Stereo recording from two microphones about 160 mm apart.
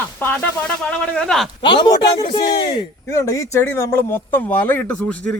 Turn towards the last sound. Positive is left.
turn(degrees=15)  # may be behind; listen again after turning